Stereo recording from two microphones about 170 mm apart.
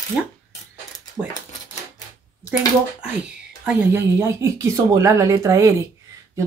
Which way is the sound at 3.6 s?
15° right (ahead or behind).